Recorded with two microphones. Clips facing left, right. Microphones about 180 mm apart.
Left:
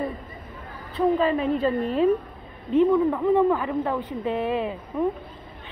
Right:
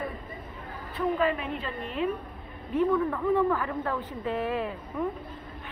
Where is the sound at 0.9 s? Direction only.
30° left (ahead or behind).